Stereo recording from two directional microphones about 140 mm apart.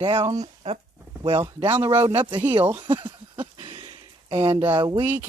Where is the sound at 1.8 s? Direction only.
35° right (ahead or behind).